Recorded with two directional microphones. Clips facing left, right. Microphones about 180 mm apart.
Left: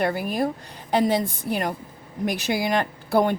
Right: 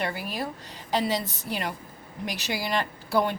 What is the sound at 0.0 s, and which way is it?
A woman's voice, 50° left (ahead or behind).